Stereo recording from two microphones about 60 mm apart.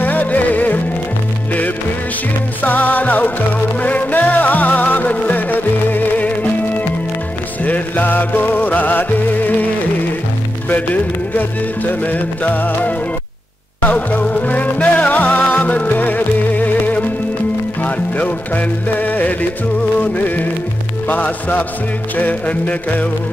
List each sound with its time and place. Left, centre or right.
0.0 s music: left
2.6 s music: left
7.6 s music: left
10.7 s music: left
21.1 s music: left